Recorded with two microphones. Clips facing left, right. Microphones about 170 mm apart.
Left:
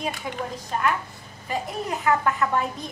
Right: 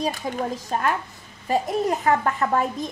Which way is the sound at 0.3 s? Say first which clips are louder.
Right 4 dB; 40° right (ahead or behind).